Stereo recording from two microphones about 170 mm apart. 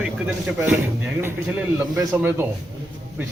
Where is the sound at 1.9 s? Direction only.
10° right (ahead or behind).